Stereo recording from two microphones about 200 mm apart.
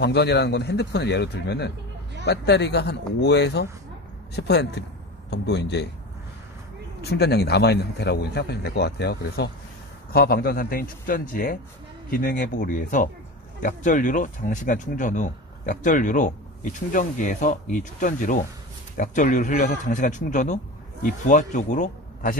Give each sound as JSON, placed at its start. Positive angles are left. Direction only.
{"t": 0.0, "sound": "a man's voice", "side_deg": 55}
{"t": 7.0, "sound": "a man's voice", "side_deg": 55}